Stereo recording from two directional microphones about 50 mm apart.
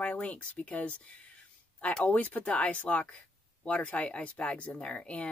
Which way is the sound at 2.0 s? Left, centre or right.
Left.